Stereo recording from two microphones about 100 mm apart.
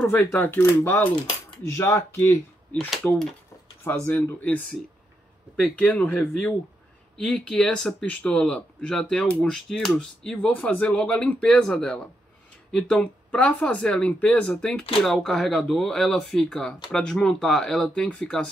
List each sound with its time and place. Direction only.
0.8 s speech: 20° left (ahead or behind)
1.7 s speech: 30° left (ahead or behind)
2.9 s speech: centre (ahead or behind)
3.8 s speech: 20° left (ahead or behind)
5.6 s speech: 15° left (ahead or behind)